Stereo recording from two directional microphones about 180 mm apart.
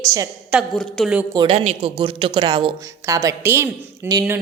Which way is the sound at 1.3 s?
30° right (ahead or behind).